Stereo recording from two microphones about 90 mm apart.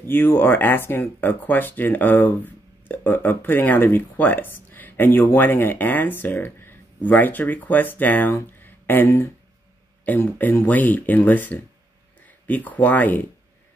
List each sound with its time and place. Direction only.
0.0 s speech: 25° left (ahead or behind)
8.5 s a sound: 20° left (ahead or behind)
10.0 s speech: 20° left (ahead or behind)